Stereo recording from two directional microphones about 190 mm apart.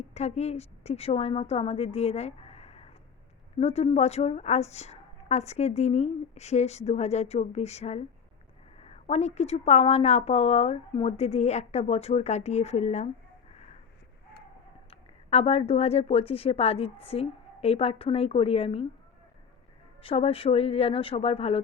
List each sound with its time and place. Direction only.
0.0 s a woman's voice: 35° left (ahead or behind)
14.8 s a woman's voice: 30° left (ahead or behind)
20.0 s a woman's voice: 30° left (ahead or behind)